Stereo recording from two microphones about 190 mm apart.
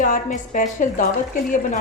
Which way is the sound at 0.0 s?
45° left (ahead or behind).